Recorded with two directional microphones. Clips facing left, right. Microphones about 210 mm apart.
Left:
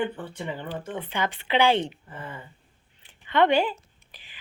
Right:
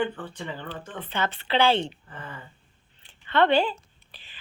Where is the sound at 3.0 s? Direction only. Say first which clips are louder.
Left 1 dB; 15° left (ahead or behind).